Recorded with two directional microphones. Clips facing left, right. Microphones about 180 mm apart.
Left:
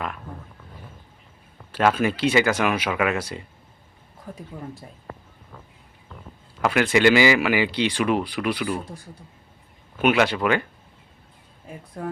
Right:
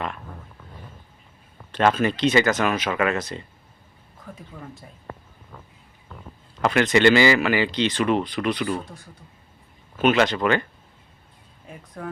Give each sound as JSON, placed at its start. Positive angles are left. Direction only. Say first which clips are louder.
{"t": 1.7, "sound": "speech", "louder": "even", "side_deg": 10}
{"t": 6.6, "sound": "speech", "louder": "right 1 dB", "side_deg": 10}
{"t": 10.0, "sound": "speech", "louder": "even", "side_deg": 10}